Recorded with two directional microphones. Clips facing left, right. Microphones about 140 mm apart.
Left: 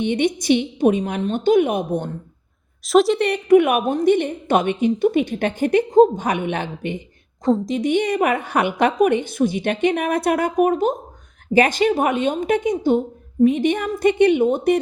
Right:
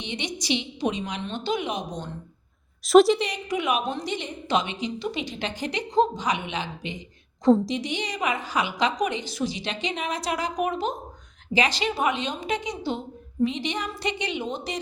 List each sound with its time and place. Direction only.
0.0 s a woman's voice: 50° left (ahead or behind)
2.8 s a woman's voice: centre (ahead or behind)
3.2 s a woman's voice: 60° left (ahead or behind)